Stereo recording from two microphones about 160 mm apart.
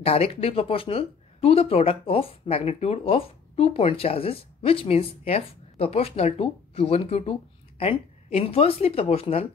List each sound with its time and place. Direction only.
0.0 s speech: 35° left (ahead or behind)